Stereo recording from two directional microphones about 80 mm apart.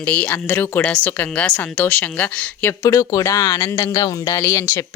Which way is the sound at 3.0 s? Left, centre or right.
Left.